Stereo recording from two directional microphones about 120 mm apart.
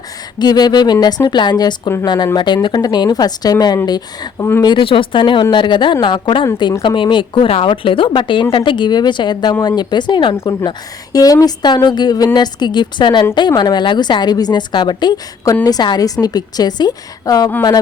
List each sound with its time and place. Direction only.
0.3 s a woman's voice: 35° left (ahead or behind)
4.6 s a woman's voice: 45° left (ahead or behind)
10.3 s a woman's voice: 25° left (ahead or behind)